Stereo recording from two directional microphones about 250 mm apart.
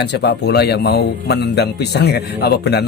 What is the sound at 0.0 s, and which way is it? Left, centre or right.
A man's voice, left.